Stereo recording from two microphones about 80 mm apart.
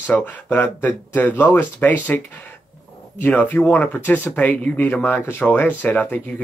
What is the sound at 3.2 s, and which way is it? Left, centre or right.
Speech, left.